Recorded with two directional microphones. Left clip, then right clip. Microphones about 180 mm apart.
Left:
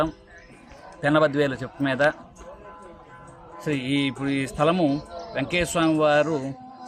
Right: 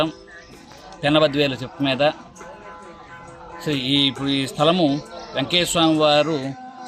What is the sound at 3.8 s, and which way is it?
Mantra, 30° left (ahead or behind).